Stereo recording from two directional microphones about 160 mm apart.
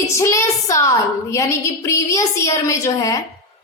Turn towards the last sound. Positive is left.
turn(degrees=20)  # may be behind; listen again after turning